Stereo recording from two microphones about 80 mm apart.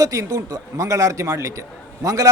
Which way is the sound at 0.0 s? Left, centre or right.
Right.